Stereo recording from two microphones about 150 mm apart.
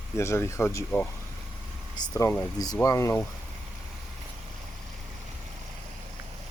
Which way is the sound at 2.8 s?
20° left (ahead or behind).